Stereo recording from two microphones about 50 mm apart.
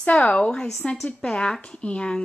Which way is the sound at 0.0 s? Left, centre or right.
Left.